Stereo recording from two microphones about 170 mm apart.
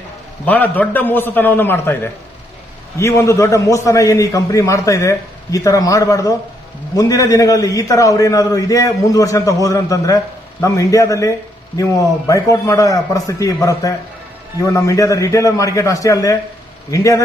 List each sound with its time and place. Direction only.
0.5 s a man's voice: 10° left (ahead or behind)
3.0 s a man's voice: 15° left (ahead or behind)